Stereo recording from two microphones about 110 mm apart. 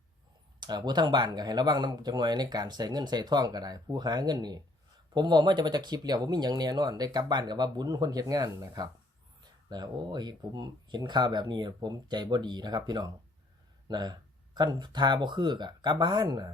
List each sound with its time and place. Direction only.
0.6 s speech: 40° right (ahead or behind)